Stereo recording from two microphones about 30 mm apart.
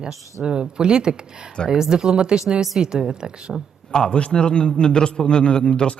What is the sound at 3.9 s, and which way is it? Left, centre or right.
A man's voice, left.